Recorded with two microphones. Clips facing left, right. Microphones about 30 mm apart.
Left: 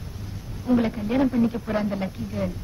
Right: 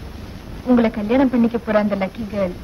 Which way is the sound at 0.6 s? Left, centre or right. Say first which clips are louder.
Right 6 dB; right.